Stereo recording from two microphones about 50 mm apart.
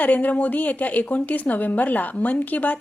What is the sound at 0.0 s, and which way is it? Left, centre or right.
A woman's voice, left.